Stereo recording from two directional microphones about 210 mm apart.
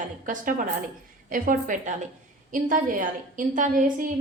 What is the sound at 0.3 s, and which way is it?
Speech, 40° right (ahead or behind).